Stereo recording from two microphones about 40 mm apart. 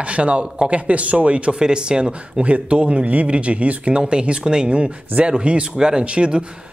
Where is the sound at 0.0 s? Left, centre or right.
Right.